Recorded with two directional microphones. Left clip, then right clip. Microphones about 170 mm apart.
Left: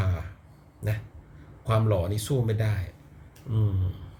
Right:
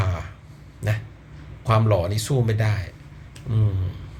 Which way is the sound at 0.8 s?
15° left (ahead or behind).